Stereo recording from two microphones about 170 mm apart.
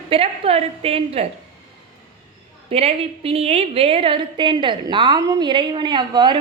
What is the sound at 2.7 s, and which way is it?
A woman's voice, 35° right (ahead or behind).